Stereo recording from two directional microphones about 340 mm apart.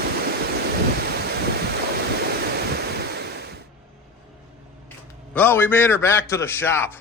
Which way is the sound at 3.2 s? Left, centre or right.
Right.